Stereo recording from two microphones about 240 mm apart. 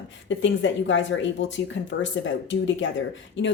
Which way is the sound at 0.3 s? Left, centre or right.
Left.